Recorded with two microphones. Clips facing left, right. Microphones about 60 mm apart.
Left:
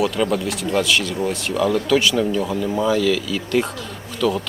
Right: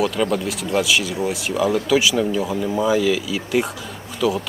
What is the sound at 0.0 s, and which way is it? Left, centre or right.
Speech, centre.